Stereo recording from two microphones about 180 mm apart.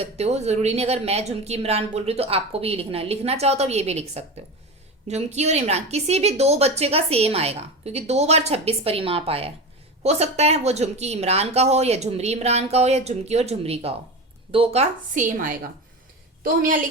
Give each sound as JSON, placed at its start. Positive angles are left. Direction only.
{"t": 0.0, "sound": "a woman's voice", "side_deg": -35}